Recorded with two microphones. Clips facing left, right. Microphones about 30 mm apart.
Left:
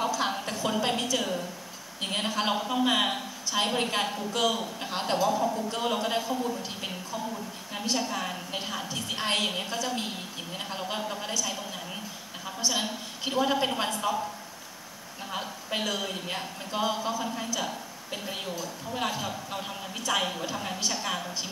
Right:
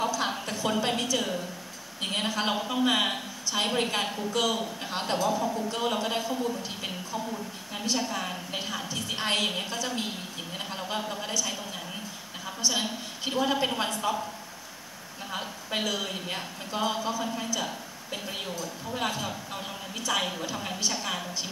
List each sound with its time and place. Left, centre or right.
0.2 s a sound: centre
0.7 s a woman's voice: centre
7.9 s a woman's voice: centre
12.6 s a woman's voice: centre
15.8 s a woman's voice: centre